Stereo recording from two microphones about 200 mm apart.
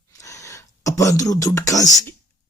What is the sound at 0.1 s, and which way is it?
Speech, 15° left (ahead or behind).